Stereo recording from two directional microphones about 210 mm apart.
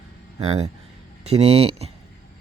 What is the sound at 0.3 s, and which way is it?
Speech, 30° right (ahead or behind).